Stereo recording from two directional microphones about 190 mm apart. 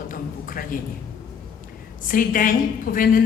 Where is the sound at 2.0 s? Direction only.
45° left (ahead or behind).